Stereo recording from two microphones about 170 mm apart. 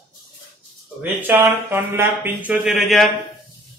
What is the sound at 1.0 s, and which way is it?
Speech, 15° right (ahead or behind).